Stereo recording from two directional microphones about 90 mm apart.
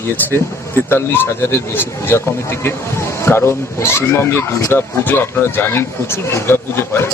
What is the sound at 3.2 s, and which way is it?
Speech, 30° left (ahead or behind).